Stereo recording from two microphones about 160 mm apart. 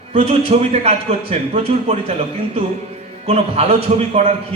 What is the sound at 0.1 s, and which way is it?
A man's voice, 40° right (ahead or behind).